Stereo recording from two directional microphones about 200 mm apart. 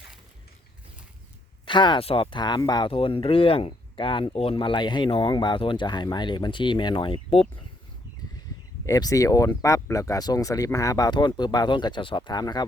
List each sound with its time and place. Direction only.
1.6 s speech: 25° left (ahead or behind)
8.9 s speech: 15° left (ahead or behind)